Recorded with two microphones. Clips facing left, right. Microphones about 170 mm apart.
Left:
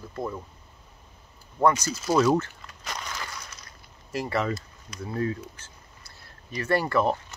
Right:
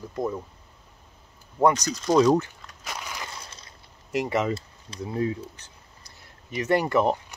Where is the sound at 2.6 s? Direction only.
5° right (ahead or behind).